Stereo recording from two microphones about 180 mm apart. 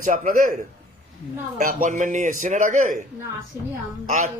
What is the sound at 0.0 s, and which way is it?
Speech, 45° right (ahead or behind).